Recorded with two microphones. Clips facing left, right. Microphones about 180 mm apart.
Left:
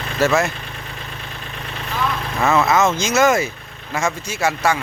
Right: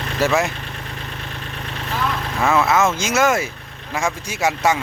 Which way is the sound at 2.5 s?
10° right (ahead or behind).